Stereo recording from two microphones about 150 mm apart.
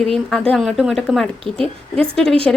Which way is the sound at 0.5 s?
Centre (ahead or behind).